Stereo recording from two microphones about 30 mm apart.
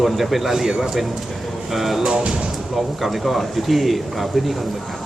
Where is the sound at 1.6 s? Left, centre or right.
Centre.